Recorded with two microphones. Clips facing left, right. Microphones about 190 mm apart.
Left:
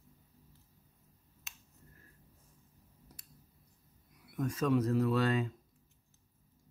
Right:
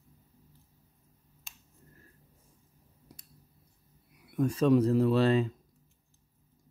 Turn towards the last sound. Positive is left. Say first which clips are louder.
# right 6 dB
turn(degrees=-30)  # may be behind; listen again after turning